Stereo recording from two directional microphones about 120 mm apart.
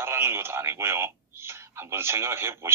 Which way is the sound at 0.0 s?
20° right (ahead or behind).